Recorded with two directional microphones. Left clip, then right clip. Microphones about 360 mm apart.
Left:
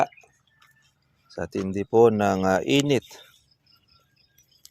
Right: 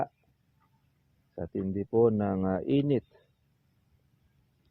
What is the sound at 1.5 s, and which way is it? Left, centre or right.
Speech, centre.